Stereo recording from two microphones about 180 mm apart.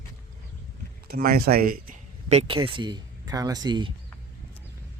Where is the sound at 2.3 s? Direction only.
35° right (ahead or behind).